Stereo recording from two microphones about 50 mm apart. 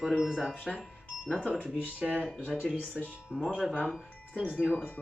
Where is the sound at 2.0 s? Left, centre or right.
Right.